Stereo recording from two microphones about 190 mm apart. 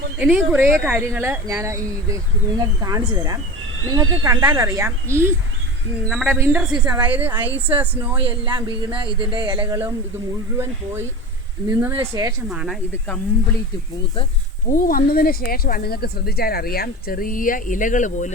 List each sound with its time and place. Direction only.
0.2 s speech: 5° right (ahead or behind)
8.2 s speech: 25° right (ahead or behind)
11.7 s speech: 10° right (ahead or behind)
12.5 s speech: centre (ahead or behind)
14.7 s speech: 45° left (ahead or behind)